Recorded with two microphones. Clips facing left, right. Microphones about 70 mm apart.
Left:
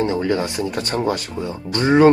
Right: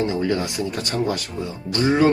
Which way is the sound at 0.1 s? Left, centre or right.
Left.